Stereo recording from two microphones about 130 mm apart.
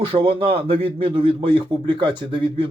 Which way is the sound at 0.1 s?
45° right (ahead or behind).